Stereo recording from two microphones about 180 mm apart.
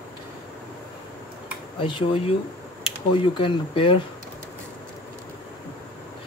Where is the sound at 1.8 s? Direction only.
30° left (ahead or behind).